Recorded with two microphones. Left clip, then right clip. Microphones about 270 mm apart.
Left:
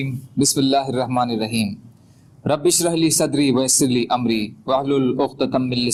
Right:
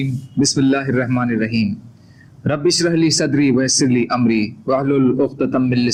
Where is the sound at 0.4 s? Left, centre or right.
Centre.